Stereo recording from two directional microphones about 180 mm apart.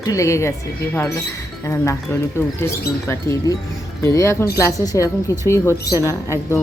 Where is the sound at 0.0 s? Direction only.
15° left (ahead or behind).